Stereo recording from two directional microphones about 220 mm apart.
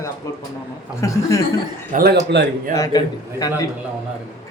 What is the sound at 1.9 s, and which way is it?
Speech, 40° right (ahead or behind).